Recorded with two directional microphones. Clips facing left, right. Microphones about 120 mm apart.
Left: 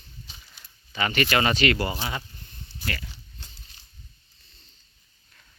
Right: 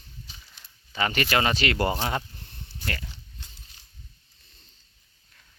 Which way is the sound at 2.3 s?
75° right (ahead or behind).